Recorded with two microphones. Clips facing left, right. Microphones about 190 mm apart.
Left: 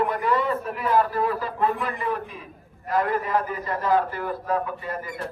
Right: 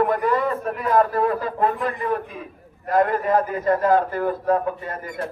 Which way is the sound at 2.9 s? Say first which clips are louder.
Right 5 dB; 45° right (ahead or behind).